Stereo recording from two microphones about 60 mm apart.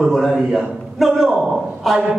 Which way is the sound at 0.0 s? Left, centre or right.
Centre.